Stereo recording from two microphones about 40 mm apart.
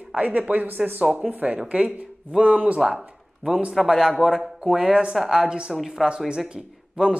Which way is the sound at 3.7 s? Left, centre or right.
Centre.